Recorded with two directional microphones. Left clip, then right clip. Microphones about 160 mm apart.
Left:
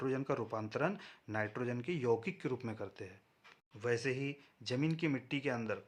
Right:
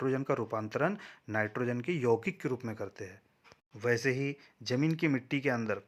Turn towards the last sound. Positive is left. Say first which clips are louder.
# right 6 dB
turn(degrees=-30)  # may be behind; listen again after turning